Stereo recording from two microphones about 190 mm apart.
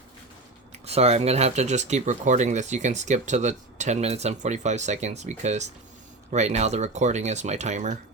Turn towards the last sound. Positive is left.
turn(degrees=-40)  # may be behind; listen again after turning